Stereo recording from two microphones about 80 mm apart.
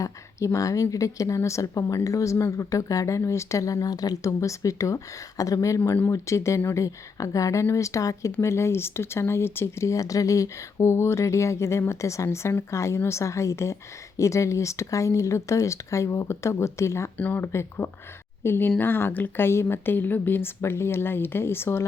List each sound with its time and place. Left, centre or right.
0.0 s speech: left
17.2 s speech: left